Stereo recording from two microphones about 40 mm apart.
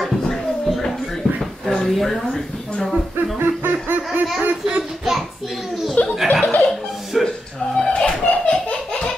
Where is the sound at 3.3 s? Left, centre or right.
Right.